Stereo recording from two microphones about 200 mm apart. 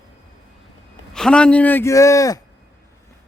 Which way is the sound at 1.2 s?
5° left (ahead or behind).